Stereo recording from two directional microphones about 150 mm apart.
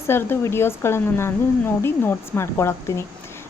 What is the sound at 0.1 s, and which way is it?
A woman's voice, 15° left (ahead or behind).